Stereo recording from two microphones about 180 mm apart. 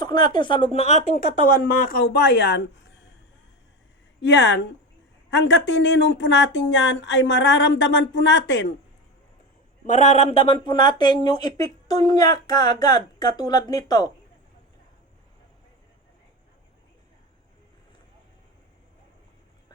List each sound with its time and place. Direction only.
0.0 s speech: 25° left (ahead or behind); by 1.1 s 40° left (ahead or behind)
1.1 s speech: 55° left (ahead or behind); by 2.9 s 70° left (ahead or behind)
4.2 s speech: 80° left
9.8 s speech: 40° left (ahead or behind); by 14.1 s 20° left (ahead or behind)